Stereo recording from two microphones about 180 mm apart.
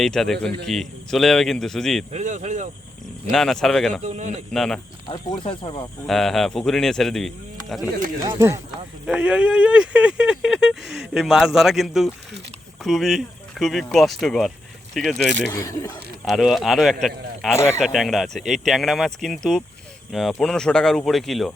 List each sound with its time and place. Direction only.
0.0 s speech: centre (ahead or behind)
2.1 s speech: 40° right (ahead or behind)
3.3 s speech: centre (ahead or behind)
4.0 s speech: 40° right (ahead or behind)
4.5 s speech: centre (ahead or behind)
5.4 s speech: 30° left (ahead or behind)
6.1 s speech: centre (ahead or behind)
8.2 s speech: 20° right (ahead or behind); by 15.3 s centre (ahead or behind)
15.4 s speech: 15° left (ahead or behind)
16.2 s speech: centre (ahead or behind)
17.5 s speech: 15° left (ahead or behind)
17.7 s speech: centre (ahead or behind)